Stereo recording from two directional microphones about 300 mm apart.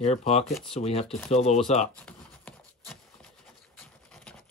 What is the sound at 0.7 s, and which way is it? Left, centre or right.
Speech, centre.